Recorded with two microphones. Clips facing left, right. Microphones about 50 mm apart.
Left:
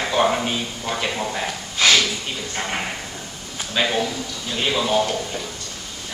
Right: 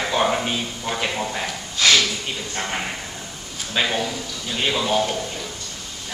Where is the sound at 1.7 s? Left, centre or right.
Centre.